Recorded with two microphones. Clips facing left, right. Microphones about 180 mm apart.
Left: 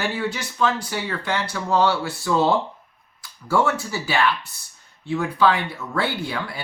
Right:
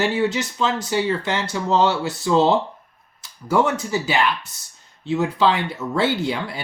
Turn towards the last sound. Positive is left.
turn(degrees=-20)  # may be behind; listen again after turning